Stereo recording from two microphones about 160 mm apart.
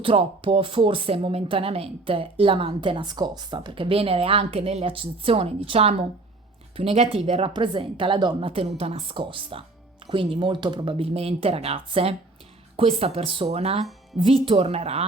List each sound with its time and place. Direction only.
0.0 s speech: 35° right (ahead or behind)